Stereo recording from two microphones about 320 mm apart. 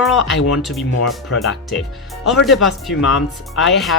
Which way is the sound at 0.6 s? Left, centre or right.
Centre.